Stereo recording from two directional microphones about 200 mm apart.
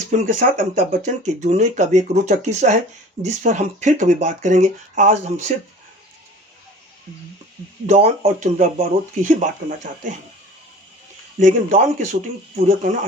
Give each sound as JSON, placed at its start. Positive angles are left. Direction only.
{"t": 0.1, "sound": "speech", "side_deg": -35}
{"t": 7.9, "sound": "speech", "side_deg": -35}
{"t": 11.3, "sound": "speech", "side_deg": -40}